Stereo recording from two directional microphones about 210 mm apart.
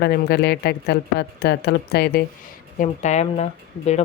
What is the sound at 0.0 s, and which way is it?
Speech, 50° left (ahead or behind).